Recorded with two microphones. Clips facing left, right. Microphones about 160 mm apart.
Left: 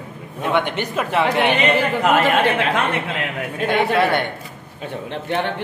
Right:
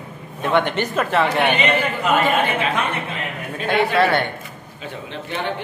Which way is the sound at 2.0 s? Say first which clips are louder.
Left 2 dB; 85° left.